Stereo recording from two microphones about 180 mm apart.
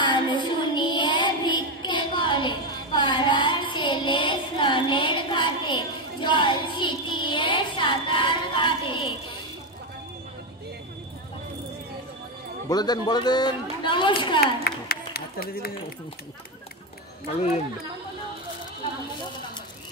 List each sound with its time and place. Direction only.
0.0 s child singing: 25° left (ahead or behind)
12.6 s speech: 20° left (ahead or behind)
14.4 s clapping: 60° left (ahead or behind)